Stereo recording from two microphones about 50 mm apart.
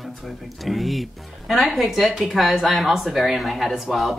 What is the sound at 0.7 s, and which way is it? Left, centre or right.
Speech, centre.